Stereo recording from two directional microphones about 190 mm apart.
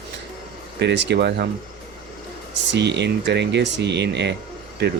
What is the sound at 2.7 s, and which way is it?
Speech, 65° right (ahead or behind).